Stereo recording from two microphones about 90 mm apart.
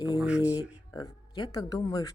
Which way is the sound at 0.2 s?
10° right (ahead or behind).